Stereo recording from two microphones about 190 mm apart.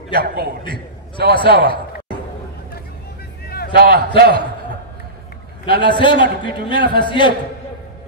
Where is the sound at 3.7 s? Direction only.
55° right (ahead or behind).